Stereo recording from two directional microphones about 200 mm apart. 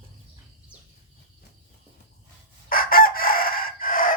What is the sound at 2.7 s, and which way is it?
Chicken, 45° left (ahead or behind).